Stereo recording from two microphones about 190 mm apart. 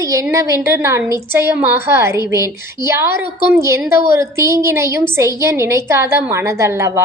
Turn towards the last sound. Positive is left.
turn(degrees=-15)  # may be behind; listen again after turning